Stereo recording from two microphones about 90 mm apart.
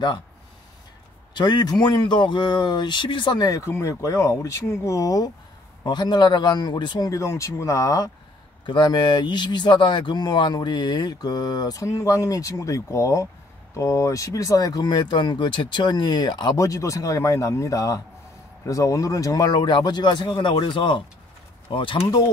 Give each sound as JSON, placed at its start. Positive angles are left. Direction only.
{"t": 1.3, "sound": "speech", "side_deg": 55}
{"t": 3.4, "sound": "speech", "side_deg": 40}
{"t": 5.9, "sound": "speech", "side_deg": 55}
{"t": 7.1, "sound": "speech", "side_deg": 35}
{"t": 8.6, "sound": "speech", "side_deg": 55}
{"t": 16.5, "sound": "speech", "side_deg": 35}